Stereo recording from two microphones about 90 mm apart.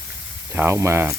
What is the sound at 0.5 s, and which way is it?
Speech, 25° right (ahead or behind).